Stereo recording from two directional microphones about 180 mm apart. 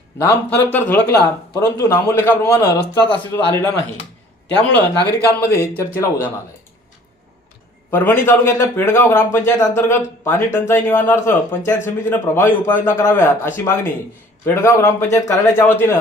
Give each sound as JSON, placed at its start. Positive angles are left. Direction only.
{"t": 0.2, "sound": "speech", "side_deg": 15}
{"t": 4.7, "sound": "speech", "side_deg": 65}
{"t": 5.5, "sound": "speech", "side_deg": 15}
{"t": 7.9, "sound": "speech", "side_deg": 10}